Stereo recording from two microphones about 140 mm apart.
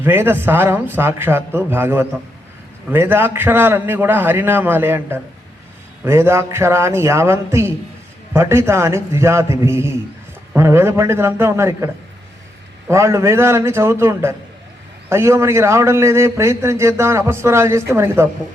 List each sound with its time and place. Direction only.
0.0 s a man's voice: 15° right (ahead or behind)
12.9 s a man's voice: 20° right (ahead or behind)